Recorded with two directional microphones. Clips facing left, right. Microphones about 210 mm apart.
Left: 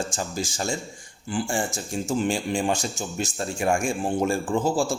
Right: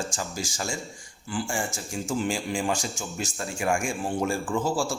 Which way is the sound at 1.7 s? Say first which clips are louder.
Left 3 dB; 20° left (ahead or behind).